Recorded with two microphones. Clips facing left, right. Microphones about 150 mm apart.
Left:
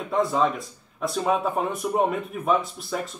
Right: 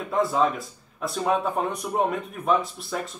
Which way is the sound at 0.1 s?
Centre (ahead or behind).